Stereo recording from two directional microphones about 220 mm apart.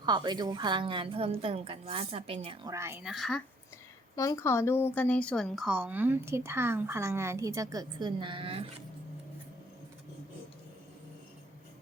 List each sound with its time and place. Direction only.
0.0 s a woman's voice: 20° right (ahead or behind); by 3.4 s centre (ahead or behind)
4.1 s speech: 15° left (ahead or behind); by 8.6 s 25° right (ahead or behind)